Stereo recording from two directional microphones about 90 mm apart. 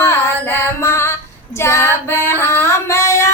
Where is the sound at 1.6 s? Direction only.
30° left (ahead or behind).